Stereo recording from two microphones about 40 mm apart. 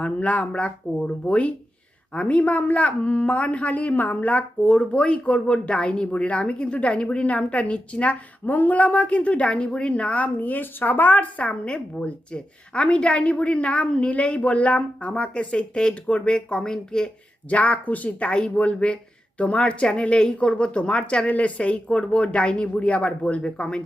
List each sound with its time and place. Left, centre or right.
0.0 s a woman's voice: left
4.7 s speech: left
8.4 s a woman's voice: left; by 17.1 s centre
17.5 s a woman's voice: left
18.3 s a woman's voice: left